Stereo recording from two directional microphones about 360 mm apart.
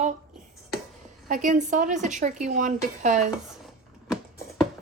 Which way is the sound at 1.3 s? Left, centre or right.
Right.